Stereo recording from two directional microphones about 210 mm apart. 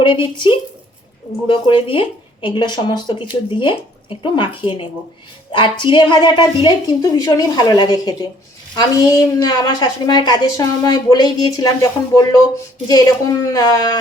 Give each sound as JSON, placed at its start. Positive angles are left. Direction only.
{"t": 0.0, "sound": "a woman's voice", "side_deg": 25}